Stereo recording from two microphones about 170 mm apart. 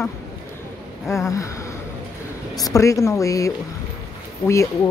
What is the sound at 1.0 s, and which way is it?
Speech, 15° left (ahead or behind).